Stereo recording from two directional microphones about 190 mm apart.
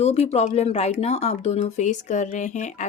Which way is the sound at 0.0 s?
35° left (ahead or behind).